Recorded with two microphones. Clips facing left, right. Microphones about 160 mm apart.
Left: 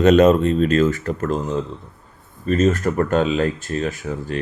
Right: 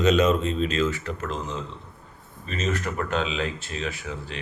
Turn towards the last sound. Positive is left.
turn(degrees=45)  # may be behind; listen again after turning